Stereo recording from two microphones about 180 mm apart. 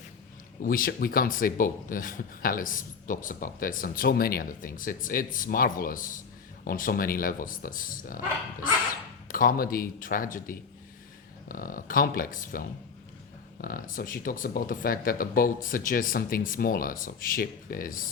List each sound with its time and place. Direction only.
0.6 s speech: 50° left (ahead or behind)
9.3 s speech: 55° left (ahead or behind)